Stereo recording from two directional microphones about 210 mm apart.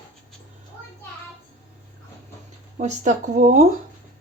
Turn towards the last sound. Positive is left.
turn(degrees=-35)  # may be behind; listen again after turning